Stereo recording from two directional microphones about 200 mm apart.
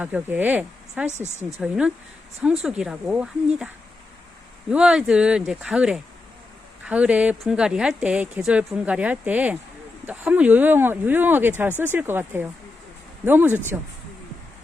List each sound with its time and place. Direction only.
0.0 s speech: 10° right (ahead or behind)
1.1 s speech: 35° right (ahead or behind)
1.6 s a woman's voice: 5° right (ahead or behind)
4.7 s a woman's voice: 5° right (ahead or behind)